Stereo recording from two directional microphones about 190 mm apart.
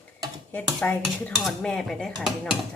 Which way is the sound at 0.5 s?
10° left (ahead or behind).